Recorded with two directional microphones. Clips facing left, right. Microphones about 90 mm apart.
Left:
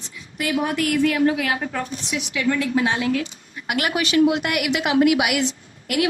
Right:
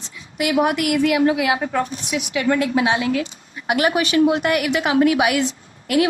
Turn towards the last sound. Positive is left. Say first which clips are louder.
# right 4 dB
turn(degrees=-30)  # may be behind; listen again after turning